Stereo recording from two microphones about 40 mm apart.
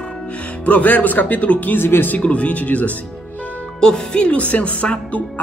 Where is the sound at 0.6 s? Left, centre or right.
Left.